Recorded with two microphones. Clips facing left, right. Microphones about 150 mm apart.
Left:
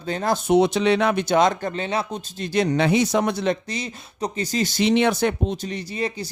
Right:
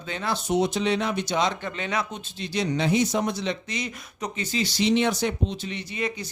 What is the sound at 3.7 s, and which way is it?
Speech, 35° left (ahead or behind).